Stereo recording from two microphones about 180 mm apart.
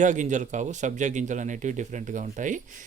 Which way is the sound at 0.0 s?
45° right (ahead or behind).